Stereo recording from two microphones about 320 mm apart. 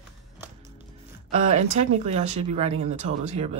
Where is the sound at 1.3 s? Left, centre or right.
Right.